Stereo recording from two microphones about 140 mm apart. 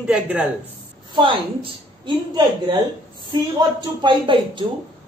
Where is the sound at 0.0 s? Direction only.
10° right (ahead or behind).